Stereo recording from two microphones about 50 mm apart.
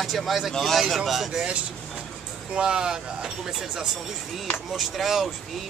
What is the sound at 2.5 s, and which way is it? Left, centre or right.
Speech, centre.